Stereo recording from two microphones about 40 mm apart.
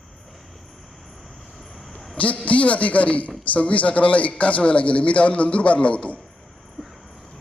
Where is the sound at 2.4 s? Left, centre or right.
Left.